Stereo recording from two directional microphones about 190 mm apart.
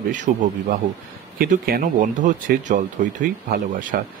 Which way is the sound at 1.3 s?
50° right (ahead or behind).